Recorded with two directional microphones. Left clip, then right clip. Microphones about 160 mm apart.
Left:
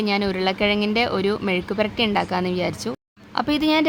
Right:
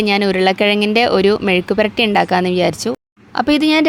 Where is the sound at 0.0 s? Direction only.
40° right (ahead or behind).